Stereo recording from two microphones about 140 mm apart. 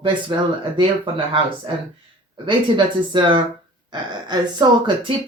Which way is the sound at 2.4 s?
35° right (ahead or behind).